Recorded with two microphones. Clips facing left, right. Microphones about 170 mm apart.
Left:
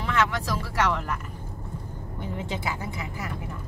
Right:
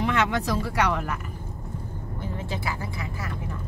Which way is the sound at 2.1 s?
20° left (ahead or behind).